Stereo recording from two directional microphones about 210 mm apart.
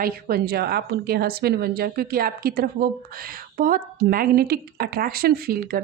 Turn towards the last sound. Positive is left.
turn(degrees=-45)  # may be behind; listen again after turning